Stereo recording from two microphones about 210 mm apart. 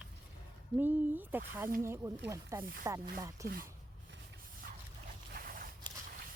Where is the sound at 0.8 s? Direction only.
10° right (ahead or behind).